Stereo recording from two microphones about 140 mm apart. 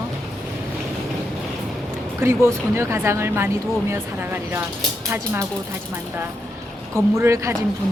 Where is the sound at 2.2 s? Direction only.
20° right (ahead or behind).